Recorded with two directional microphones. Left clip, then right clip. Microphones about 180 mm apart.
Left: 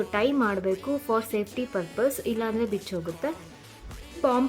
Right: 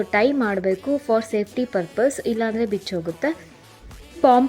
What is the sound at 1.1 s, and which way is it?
A woman's voice, 15° right (ahead or behind).